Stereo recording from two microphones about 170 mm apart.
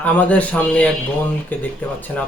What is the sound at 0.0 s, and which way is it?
Speech, 10° left (ahead or behind).